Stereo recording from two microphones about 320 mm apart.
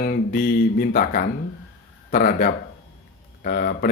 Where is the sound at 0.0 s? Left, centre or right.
Left.